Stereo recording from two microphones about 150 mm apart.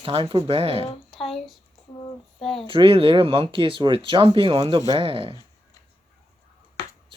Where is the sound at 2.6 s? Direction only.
35° right (ahead or behind).